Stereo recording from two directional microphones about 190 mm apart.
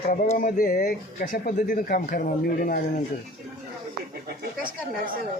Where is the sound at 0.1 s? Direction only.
45° left (ahead or behind).